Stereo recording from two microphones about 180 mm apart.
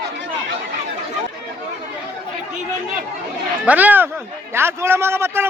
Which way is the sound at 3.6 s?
10° right (ahead or behind).